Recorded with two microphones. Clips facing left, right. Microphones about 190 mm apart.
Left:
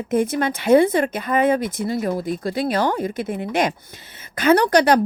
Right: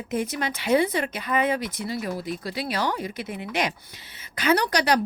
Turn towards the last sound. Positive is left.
turn(degrees=50)  # may be behind; listen again after turning